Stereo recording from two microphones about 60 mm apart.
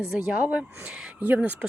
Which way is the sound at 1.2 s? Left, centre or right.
Right.